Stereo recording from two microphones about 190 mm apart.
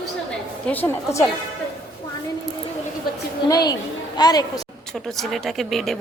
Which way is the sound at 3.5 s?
20° left (ahead or behind).